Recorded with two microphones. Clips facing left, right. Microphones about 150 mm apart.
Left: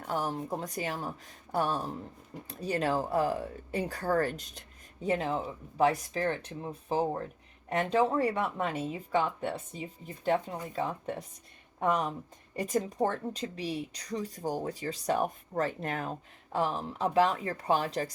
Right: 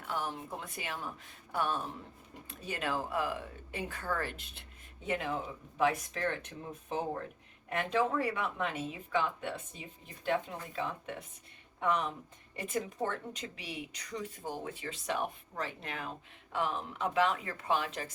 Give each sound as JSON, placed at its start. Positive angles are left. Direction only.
{"t": 0.0, "sound": "speech", "side_deg": 40}
{"t": 10.8, "sound": "speech", "side_deg": 40}